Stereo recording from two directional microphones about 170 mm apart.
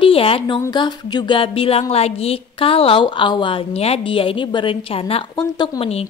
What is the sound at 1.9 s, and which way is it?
A woman's voice, 35° left (ahead or behind).